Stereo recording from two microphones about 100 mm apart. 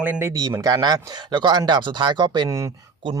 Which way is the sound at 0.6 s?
40° right (ahead or behind).